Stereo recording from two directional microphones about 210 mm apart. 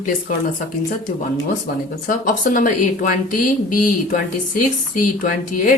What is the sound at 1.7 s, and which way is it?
Speech, 40° left (ahead or behind).